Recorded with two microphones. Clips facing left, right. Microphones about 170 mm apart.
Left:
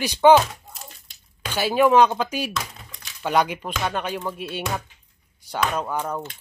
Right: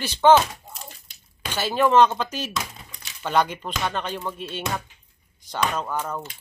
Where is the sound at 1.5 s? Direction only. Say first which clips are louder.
Left 2 dB; 10° left (ahead or behind).